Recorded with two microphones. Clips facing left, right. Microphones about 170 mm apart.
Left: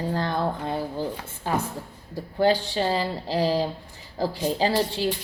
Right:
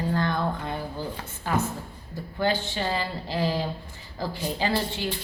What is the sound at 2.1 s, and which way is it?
A woman's voice, 35° left (ahead or behind).